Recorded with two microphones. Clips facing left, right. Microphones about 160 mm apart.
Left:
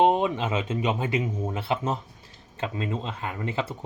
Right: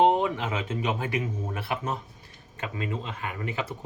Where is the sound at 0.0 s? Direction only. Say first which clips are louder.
Left 1 dB; 20° left (ahead or behind).